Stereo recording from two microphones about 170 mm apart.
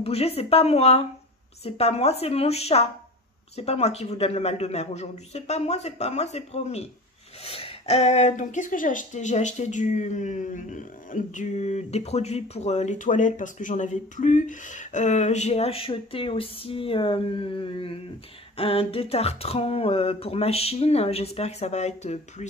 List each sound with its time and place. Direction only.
0.0 s speech: 35° left (ahead or behind)